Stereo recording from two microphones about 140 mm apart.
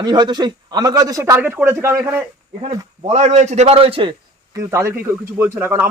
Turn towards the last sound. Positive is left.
turn(degrees=-15)  # may be behind; listen again after turning